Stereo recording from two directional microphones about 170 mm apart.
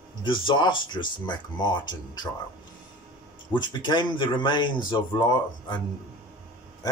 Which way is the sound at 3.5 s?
25° left (ahead or behind).